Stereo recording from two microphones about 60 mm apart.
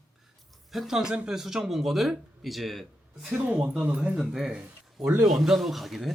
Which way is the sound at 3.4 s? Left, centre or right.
Right.